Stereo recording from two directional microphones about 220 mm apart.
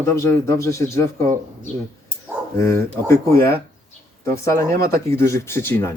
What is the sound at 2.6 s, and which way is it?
Speech, 10° left (ahead or behind).